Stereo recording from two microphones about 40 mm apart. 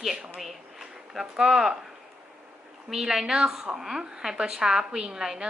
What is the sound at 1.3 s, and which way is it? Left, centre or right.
Speech, centre.